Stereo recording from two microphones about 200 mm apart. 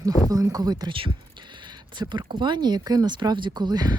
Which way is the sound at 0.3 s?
20° right (ahead or behind).